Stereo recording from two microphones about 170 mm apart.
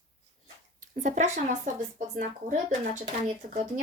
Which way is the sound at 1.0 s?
45° right (ahead or behind).